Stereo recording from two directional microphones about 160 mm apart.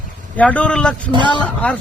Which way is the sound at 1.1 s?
30° right (ahead or behind).